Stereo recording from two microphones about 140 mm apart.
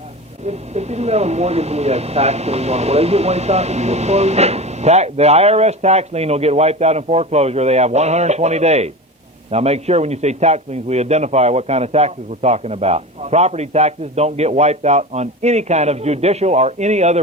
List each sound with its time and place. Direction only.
0.4 s speech: 50° right (ahead or behind)